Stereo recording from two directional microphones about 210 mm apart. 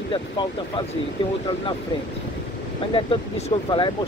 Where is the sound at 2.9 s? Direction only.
25° left (ahead or behind).